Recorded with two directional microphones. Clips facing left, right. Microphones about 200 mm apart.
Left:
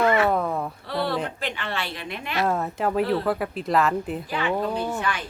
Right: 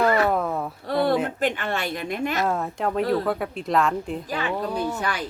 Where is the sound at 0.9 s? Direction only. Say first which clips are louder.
Right 6 dB; 50° right (ahead or behind).